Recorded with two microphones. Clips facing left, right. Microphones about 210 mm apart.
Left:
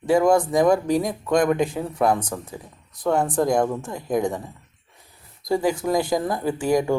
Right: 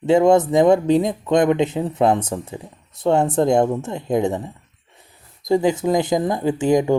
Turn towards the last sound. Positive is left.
turn(degrees=-20)  # may be behind; listen again after turning